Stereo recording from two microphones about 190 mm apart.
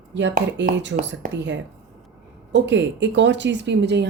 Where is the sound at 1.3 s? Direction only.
75° right (ahead or behind).